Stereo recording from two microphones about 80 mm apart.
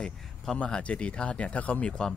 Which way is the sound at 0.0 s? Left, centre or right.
Centre.